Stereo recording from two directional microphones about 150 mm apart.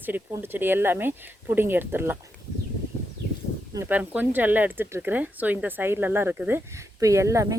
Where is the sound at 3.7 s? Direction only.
10° right (ahead or behind).